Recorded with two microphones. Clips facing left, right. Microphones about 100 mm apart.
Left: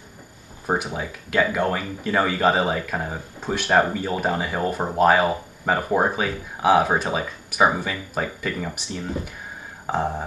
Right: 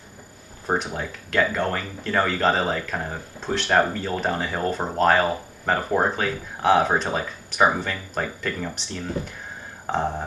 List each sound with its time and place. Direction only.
0.7 s speech: 5° left (ahead or behind)